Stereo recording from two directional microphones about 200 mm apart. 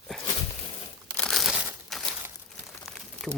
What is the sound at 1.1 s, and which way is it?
Crumpling, 5° left (ahead or behind).